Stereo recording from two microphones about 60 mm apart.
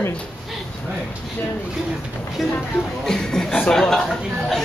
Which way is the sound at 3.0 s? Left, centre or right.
Centre.